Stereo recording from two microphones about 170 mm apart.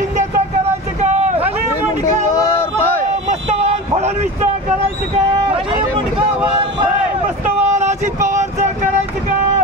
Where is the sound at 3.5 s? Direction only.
40° right (ahead or behind).